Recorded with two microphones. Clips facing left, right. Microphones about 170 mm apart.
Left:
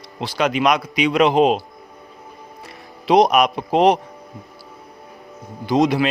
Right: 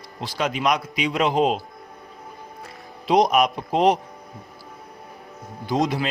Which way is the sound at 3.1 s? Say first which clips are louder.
Left 4 dB; 80° left.